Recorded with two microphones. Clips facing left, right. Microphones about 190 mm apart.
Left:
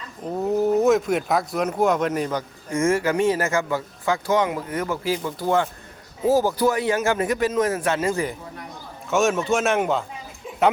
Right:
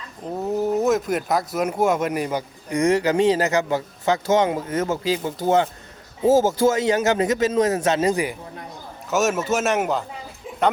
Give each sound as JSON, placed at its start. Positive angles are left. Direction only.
{"t": 0.4, "sound": "speech", "side_deg": 0}
{"t": 9.0, "sound": "a man's voice", "side_deg": -5}